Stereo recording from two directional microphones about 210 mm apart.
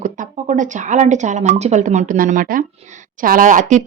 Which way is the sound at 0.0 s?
35° right (ahead or behind).